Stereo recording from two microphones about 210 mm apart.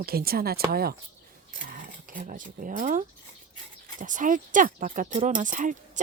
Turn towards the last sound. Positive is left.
turn(degrees=-35)  # may be behind; listen again after turning